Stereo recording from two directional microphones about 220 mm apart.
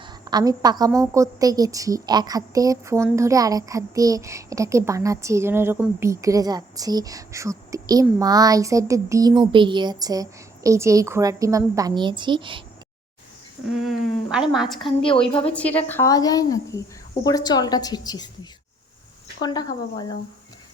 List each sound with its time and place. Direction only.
0.0 s a woman's voice: 20° right (ahead or behind)
13.8 s a woman's voice: 5° right (ahead or behind)
14.8 s a woman's voice: 25° left (ahead or behind)
15.5 s a woman's voice: 5° left (ahead or behind)
19.4 s a woman's voice: 20° left (ahead or behind)